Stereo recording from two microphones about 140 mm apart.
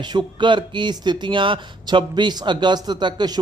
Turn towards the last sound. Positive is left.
turn(degrees=-30)  # may be behind; listen again after turning